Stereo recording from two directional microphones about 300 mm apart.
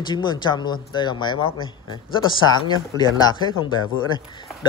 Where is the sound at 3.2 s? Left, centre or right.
Centre.